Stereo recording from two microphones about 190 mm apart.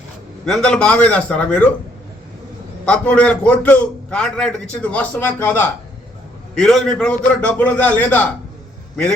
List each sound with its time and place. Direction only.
0.4 s a man's voice: 5° left (ahead or behind)
2.8 s a man's voice: 5° left (ahead or behind)